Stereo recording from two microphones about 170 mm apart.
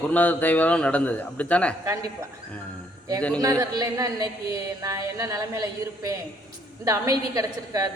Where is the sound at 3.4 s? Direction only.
20° right (ahead or behind).